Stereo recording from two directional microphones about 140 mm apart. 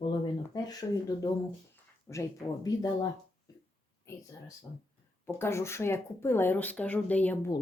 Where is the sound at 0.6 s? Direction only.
25° left (ahead or behind).